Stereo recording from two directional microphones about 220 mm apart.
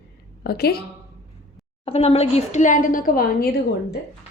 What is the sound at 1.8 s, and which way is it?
Speech, 25° left (ahead or behind).